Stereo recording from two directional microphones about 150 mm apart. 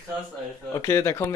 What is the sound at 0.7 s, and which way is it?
Speech, 20° left (ahead or behind).